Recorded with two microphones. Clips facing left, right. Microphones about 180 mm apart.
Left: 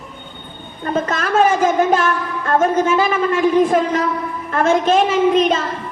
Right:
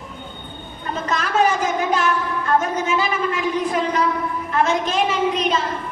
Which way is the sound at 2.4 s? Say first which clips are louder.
Left 6 dB; 50° left (ahead or behind).